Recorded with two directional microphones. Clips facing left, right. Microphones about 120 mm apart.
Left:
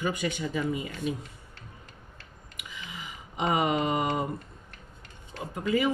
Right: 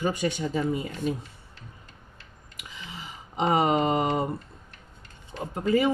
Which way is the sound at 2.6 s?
30° right (ahead or behind).